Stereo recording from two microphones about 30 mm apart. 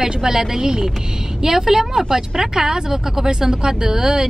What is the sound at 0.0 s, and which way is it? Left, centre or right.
Speech, right.